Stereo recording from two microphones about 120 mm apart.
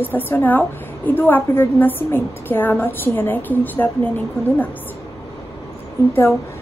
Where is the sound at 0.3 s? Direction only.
15° left (ahead or behind).